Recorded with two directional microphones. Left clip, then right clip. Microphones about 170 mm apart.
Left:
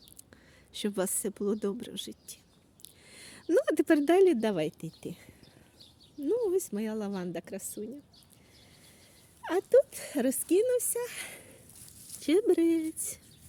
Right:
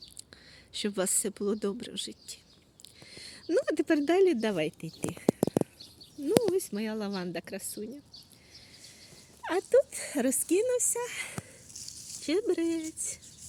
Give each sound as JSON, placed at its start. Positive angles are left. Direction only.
{"t": 0.2, "sound": "speech", "side_deg": 15}
{"t": 2.8, "sound": "a sound", "side_deg": 20}
{"t": 6.2, "sound": "speech", "side_deg": 15}
{"t": 9.4, "sound": "speech", "side_deg": 15}
{"t": 11.0, "sound": "a sound", "side_deg": 25}
{"t": 12.2, "sound": "speech", "side_deg": 40}